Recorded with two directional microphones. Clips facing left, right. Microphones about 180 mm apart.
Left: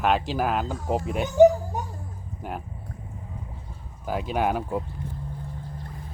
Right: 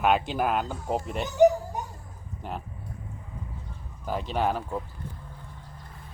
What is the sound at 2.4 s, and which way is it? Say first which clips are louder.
Speech: left 2 dB; 10° left (ahead or behind).